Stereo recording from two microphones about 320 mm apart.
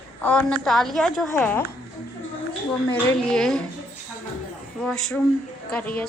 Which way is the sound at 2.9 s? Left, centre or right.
Centre.